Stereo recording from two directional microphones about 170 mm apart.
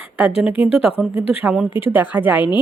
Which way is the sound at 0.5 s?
30° left (ahead or behind).